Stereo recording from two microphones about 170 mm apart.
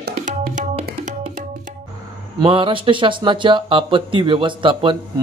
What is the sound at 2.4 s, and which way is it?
Speech, 30° right (ahead or behind).